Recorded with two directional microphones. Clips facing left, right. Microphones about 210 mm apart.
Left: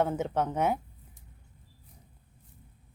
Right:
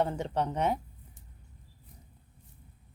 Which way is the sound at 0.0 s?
5° left (ahead or behind).